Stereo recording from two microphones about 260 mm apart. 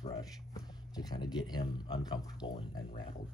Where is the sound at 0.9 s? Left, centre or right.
Centre.